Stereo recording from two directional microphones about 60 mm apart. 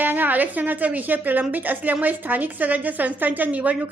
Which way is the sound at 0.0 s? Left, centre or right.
Right.